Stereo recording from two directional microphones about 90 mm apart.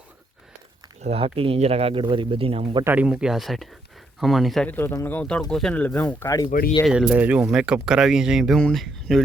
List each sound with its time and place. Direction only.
1.1 s speech: 90° right
2.8 s speech: 20° right (ahead or behind)
3.1 s speech: 5° right (ahead or behind)
4.6 s speech: 20° left (ahead or behind)
5.2 s speech: 10° left (ahead or behind)
6.2 s speech: 40° left (ahead or behind)
7.2 s speech: 15° right (ahead or behind); by 9.2 s centre (ahead or behind)